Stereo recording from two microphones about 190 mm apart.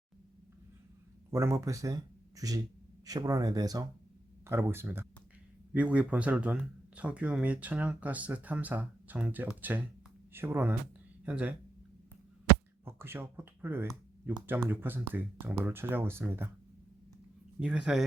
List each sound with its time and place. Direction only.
1.3 s speech: 15° right (ahead or behind)
12.8 s speech: 10° right (ahead or behind)
17.6 s speech: 5° right (ahead or behind)